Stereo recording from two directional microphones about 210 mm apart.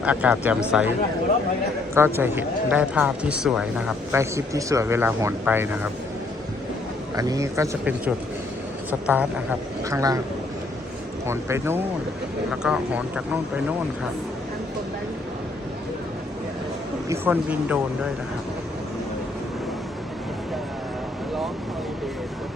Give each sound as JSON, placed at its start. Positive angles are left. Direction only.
{"t": 0.0, "sound": "speech", "side_deg": -5}
{"t": 2.0, "sound": "speech", "side_deg": -10}
{"t": 7.2, "sound": "speech", "side_deg": -15}
{"t": 11.3, "sound": "speech", "side_deg": -10}
{"t": 17.1, "sound": "speech", "side_deg": -10}